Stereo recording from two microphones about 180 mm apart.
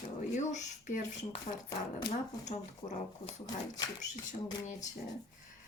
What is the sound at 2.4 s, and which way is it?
Speech, 30° left (ahead or behind).